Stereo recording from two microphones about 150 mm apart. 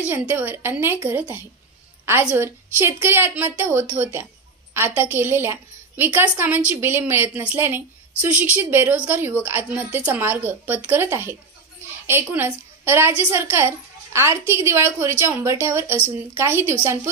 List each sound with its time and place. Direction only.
0.1 s a woman's voice: 10° right (ahead or behind)